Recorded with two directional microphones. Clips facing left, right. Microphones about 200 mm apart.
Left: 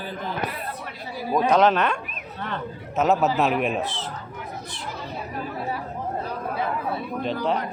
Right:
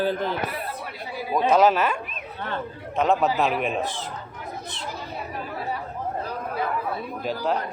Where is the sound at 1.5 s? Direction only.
5° right (ahead or behind).